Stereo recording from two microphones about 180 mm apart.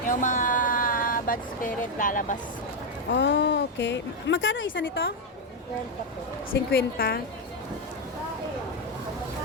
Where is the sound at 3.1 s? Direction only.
75° left (ahead or behind); by 4.8 s 90° left.